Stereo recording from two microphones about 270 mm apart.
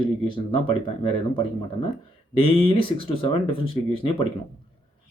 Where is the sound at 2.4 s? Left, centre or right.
Centre.